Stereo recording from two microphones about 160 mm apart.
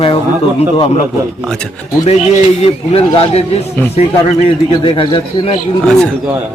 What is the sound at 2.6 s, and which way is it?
Speech, 40° left (ahead or behind).